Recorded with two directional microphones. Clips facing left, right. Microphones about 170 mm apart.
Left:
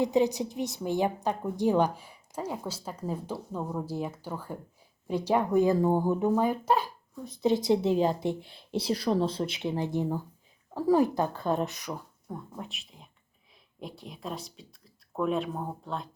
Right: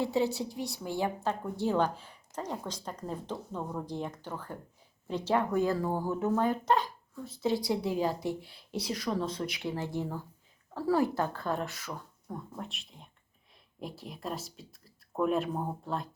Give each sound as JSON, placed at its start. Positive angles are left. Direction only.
{"t": 0.0, "sound": "a woman's voice", "side_deg": 20}
{"t": 12.3, "sound": "speech", "side_deg": 0}